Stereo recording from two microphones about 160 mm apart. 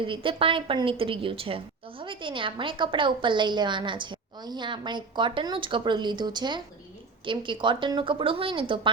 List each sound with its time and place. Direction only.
0.0 s a woman's voice: 30° right (ahead or behind)